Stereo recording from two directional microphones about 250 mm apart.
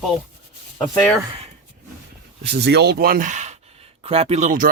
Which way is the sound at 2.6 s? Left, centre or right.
Right.